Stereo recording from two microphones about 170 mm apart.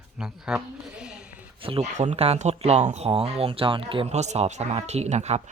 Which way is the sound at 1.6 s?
35° right (ahead or behind).